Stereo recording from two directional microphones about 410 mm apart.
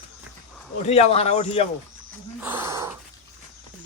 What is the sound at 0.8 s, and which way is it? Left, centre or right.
Speech, centre.